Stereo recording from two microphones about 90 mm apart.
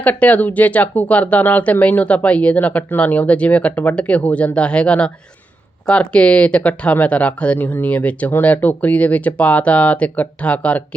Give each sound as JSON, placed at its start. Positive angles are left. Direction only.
{"t": 0.0, "sound": "speech", "side_deg": 15}